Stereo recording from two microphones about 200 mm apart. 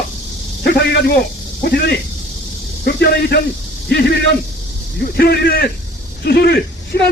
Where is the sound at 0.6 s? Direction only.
55° left (ahead or behind).